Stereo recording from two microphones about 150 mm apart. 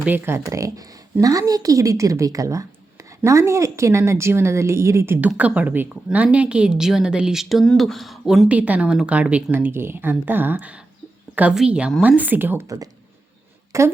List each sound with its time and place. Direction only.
0.0 s a woman's voice: 15° right (ahead or behind)